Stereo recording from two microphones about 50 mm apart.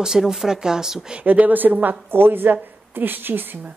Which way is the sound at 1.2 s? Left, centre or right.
Right.